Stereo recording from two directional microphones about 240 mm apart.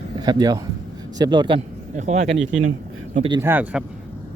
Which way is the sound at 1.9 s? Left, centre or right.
Right.